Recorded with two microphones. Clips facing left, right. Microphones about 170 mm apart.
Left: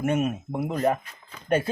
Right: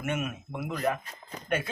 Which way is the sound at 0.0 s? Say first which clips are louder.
Left 8 dB; 35° left (ahead or behind).